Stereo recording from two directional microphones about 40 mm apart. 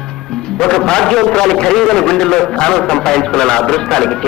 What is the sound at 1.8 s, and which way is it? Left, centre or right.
A man's voice, centre.